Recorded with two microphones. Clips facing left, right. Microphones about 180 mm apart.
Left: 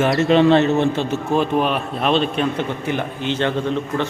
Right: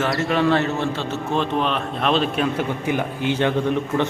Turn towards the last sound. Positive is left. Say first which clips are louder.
# right 1 dB
turn(degrees=-15)  # may be behind; listen again after turning